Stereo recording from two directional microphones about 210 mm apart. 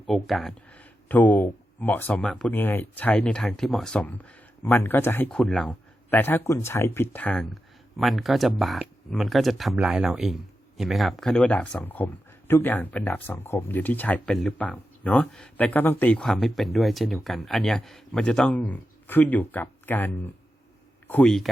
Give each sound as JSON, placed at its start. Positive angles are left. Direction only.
{"t": 0.0, "sound": "speech", "side_deg": 0}